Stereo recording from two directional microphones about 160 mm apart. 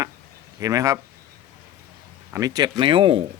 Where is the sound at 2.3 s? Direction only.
25° right (ahead or behind).